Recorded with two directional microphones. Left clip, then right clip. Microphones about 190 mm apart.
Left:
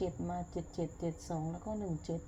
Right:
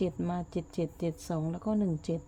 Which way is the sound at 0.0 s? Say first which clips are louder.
Right 5 dB; 50° right (ahead or behind).